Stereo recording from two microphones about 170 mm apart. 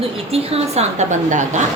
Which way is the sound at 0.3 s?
35° right (ahead or behind).